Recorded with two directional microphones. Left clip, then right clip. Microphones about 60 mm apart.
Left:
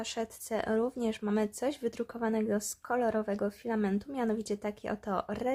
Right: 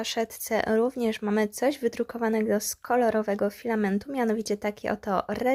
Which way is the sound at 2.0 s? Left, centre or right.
Right.